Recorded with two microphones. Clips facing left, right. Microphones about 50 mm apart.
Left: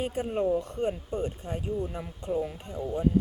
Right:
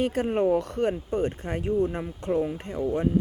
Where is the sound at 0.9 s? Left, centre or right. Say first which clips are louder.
Right 4 dB; right.